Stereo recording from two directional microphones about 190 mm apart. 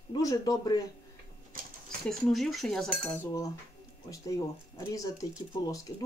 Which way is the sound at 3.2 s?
15° left (ahead or behind).